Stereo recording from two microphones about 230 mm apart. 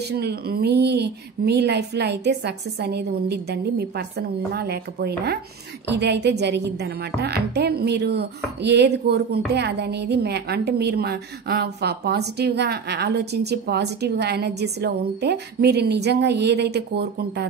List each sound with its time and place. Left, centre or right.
0.1 s a woman's voice: right